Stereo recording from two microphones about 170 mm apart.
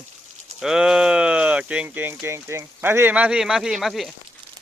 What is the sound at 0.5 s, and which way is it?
Speech, 5° right (ahead or behind).